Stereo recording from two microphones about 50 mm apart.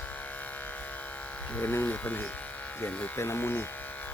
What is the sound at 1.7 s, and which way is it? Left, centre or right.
Electric shaver, left.